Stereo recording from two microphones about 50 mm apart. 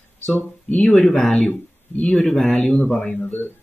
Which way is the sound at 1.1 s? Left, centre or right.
Centre.